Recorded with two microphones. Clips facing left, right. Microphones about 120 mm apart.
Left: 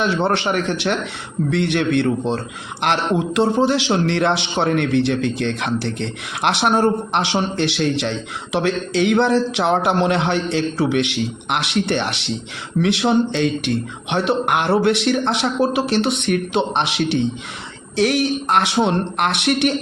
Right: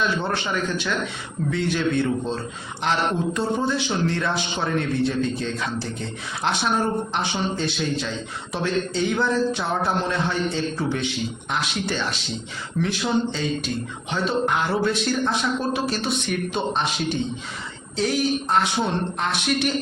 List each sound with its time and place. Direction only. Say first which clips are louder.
0.0 s a man's voice: left 6 dB; 70° left (ahead or behind)